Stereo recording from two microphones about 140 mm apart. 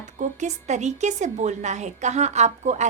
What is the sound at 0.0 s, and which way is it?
A woman's voice, 60° right (ahead or behind).